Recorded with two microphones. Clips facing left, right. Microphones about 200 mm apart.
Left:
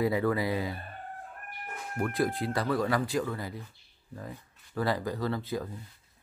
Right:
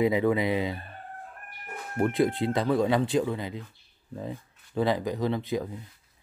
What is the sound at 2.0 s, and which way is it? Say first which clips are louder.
Speech: right 5 dB; 25° right (ahead or behind).